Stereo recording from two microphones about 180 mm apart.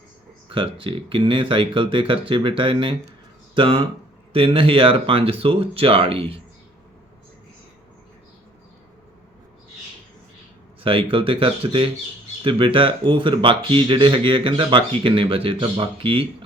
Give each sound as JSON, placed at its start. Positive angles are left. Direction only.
{"t": 0.4, "sound": "speech", "side_deg": -30}
{"t": 10.8, "sound": "speech", "side_deg": -30}